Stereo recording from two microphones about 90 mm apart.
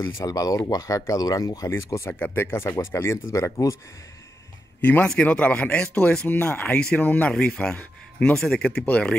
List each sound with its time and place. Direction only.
0.2 s speech: 45° left (ahead or behind)
1.7 s speech: 30° left (ahead or behind)
5.0 s speech: 10° left (ahead or behind)